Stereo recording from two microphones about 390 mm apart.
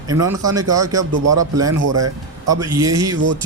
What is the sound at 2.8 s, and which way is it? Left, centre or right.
Speech, centre.